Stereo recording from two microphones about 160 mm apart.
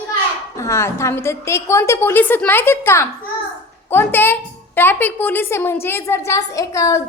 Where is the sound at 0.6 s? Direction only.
15° left (ahead or behind).